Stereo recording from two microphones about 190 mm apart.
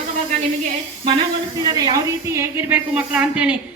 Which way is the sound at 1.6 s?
20° right (ahead or behind).